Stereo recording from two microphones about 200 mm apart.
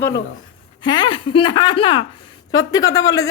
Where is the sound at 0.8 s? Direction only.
25° left (ahead or behind).